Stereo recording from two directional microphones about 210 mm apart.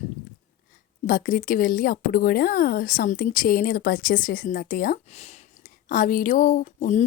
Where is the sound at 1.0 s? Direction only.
40° left (ahead or behind).